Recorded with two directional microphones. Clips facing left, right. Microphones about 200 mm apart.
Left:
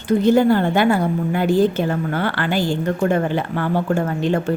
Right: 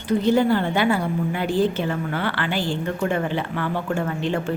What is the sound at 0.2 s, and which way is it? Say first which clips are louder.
A woman's voice: left 4 dB; 50° left (ahead or behind).